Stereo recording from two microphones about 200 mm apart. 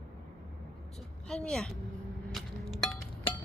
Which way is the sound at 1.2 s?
5° left (ahead or behind).